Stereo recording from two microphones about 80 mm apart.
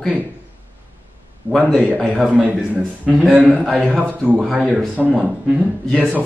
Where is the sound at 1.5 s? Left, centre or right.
Right.